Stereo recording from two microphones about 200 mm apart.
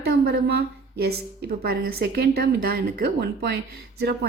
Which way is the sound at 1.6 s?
50° right (ahead or behind).